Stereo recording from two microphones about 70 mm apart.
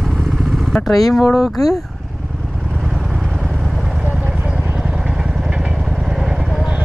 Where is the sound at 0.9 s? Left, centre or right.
Left.